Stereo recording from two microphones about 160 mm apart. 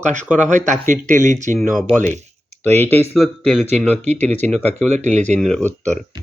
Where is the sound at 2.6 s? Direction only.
15° left (ahead or behind).